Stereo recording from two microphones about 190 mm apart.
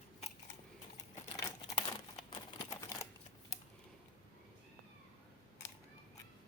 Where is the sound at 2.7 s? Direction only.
15° left (ahead or behind).